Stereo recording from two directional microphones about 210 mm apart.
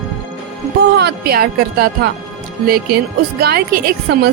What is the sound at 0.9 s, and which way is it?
Speech, 50° right (ahead or behind).